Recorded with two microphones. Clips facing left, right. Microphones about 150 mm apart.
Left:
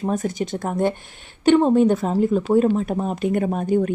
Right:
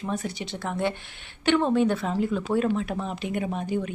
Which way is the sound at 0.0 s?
45° left (ahead or behind).